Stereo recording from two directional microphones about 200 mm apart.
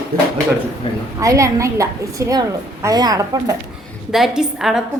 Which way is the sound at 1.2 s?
15° right (ahead or behind).